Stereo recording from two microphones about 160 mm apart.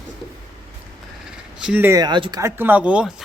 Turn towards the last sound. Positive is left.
turn(degrees=-5)  # may be behind; listen again after turning